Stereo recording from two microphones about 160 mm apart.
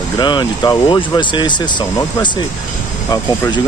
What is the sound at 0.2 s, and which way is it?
Speech, 30° left (ahead or behind).